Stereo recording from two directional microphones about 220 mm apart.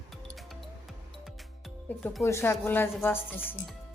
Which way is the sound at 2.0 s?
10° left (ahead or behind).